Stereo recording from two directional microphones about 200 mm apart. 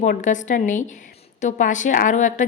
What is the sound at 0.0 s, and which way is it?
A woman's voice, 40° left (ahead or behind).